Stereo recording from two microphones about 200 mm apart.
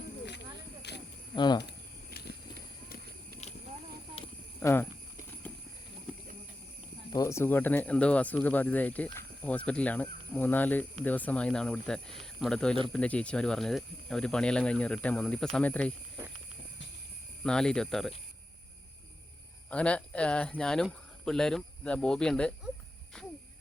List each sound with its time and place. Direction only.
0.3 s a sound: 60° left (ahead or behind)
1.4 s speech: 20° left (ahead or behind)
3.4 s clip-clop: 35° left (ahead or behind)
4.2 s livestock: 30° left (ahead or behind)
4.6 s speech: 10° left (ahead or behind)
7.1 s speech: 15° left (ahead or behind)
17.4 s speech: 5° left (ahead or behind)
19.7 s speech: 5° left (ahead or behind)